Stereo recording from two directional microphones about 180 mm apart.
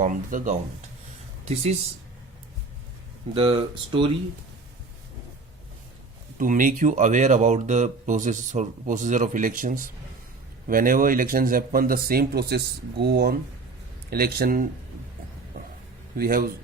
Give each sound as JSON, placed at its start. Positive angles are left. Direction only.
{"t": 0.0, "sound": "speech", "side_deg": -45}
{"t": 3.3, "sound": "speech", "side_deg": -30}
{"t": 6.3, "sound": "speech", "side_deg": -50}
{"t": 16.1, "sound": "speech", "side_deg": -55}